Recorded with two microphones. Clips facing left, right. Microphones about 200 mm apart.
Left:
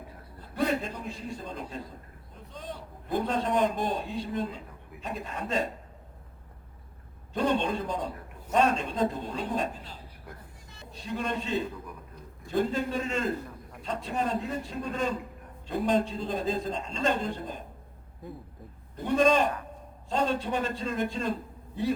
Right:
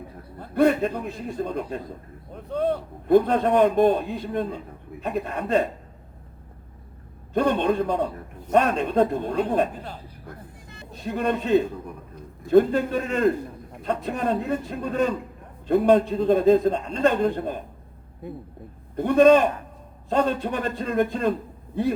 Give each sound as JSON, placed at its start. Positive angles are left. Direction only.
{"t": 0.3, "sound": "a man's voice", "side_deg": -55}
{"t": 7.3, "sound": "a man's voice", "side_deg": -55}
{"t": 18.9, "sound": "a man's voice", "side_deg": -55}